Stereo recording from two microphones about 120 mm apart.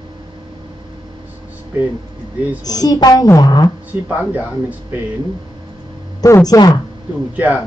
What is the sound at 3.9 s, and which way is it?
Speech, 15° right (ahead or behind).